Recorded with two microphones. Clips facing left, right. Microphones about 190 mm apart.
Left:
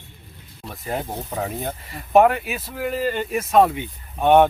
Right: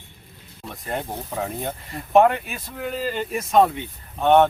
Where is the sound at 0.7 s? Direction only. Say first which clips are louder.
Left 1 dB; 5° left (ahead or behind).